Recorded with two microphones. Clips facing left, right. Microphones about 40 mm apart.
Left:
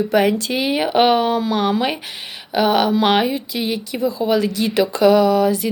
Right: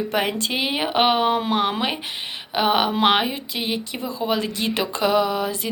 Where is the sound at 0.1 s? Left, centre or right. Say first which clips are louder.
Left 6 dB; right.